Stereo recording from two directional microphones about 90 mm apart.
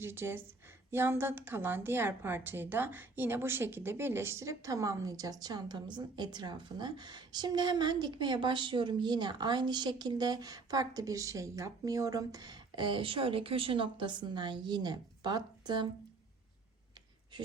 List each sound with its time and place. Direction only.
0.0 s a woman's voice: 25° right (ahead or behind); by 15.9 s 55° right (ahead or behind)
17.3 s speech: 60° right (ahead or behind)